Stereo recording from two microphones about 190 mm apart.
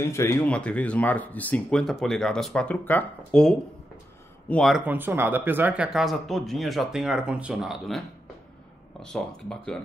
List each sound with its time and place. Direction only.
0.0 s speech: 15° left (ahead or behind)
9.0 s speech: 5° left (ahead or behind)